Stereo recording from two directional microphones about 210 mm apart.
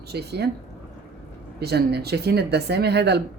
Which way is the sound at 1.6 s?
50° right (ahead or behind).